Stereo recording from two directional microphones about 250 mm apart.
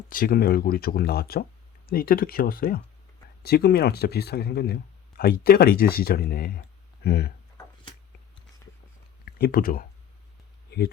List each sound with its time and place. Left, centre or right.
0.1 s speech: left
9.2 s speech: left